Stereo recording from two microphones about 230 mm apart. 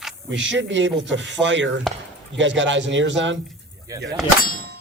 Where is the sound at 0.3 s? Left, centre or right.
Right.